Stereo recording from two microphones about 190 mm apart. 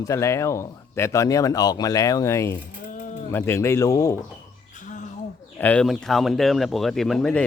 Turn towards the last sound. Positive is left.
turn(degrees=0)  # may be behind; listen again after turning